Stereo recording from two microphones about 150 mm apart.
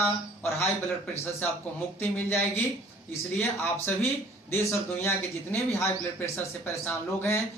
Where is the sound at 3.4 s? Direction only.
15° left (ahead or behind).